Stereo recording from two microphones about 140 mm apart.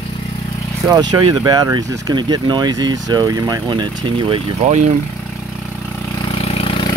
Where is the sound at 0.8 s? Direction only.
30° right (ahead or behind).